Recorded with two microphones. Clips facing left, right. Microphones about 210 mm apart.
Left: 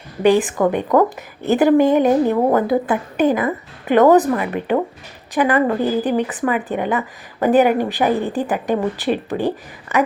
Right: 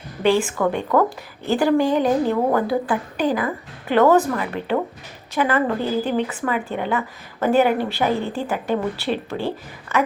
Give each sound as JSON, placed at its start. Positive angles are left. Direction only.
{"t": 0.2, "sound": "a woman's voice", "side_deg": 15}